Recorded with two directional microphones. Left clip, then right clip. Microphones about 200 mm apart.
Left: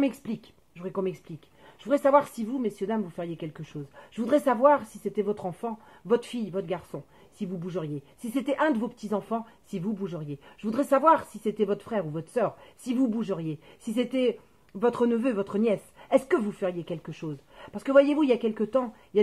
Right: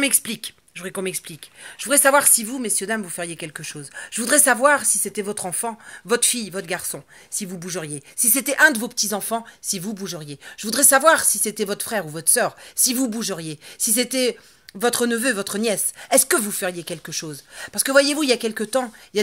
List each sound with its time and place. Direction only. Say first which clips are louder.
0.0 s speech: right 6 dB; 10° right (ahead or behind)